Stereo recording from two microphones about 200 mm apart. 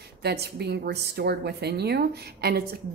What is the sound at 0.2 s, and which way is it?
A woman's voice, 55° right (ahead or behind).